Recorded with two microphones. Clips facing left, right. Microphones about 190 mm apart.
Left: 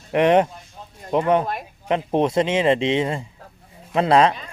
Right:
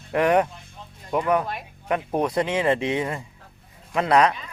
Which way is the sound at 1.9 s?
25° left (ahead or behind).